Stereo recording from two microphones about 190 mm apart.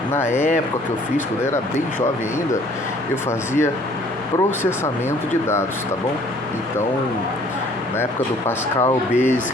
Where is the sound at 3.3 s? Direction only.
15° left (ahead or behind).